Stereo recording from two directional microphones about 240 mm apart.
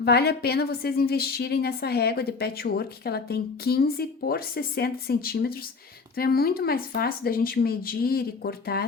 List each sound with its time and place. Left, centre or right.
0.0 s a woman's voice: left